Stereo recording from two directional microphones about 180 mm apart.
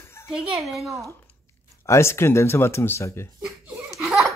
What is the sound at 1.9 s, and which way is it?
Speech, 15° left (ahead or behind).